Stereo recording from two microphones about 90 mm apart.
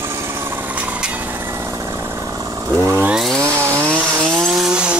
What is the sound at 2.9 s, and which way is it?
Chainsaw, 20° right (ahead or behind).